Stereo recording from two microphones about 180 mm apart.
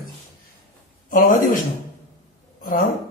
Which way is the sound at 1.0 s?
50° left (ahead or behind).